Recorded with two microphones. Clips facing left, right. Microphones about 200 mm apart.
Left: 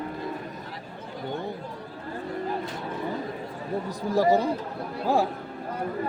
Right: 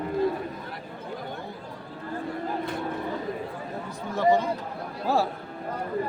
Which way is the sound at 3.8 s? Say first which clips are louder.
Left 1 dB; 35° left (ahead or behind).